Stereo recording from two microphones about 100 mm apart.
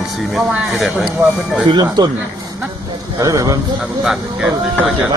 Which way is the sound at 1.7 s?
45° right (ahead or behind).